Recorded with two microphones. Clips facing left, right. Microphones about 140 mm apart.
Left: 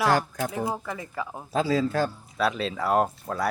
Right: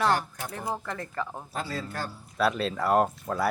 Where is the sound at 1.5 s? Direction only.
90° left.